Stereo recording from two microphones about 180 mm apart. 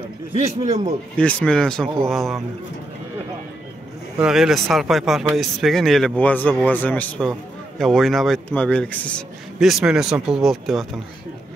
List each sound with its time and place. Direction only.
0.3 s a man's voice: 40° right (ahead or behind)
1.1 s a man's voice: 5° left (ahead or behind)
4.2 s a man's voice: centre (ahead or behind)